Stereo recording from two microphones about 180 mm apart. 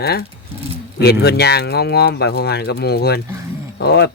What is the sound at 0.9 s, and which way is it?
Speech, 65° left (ahead or behind).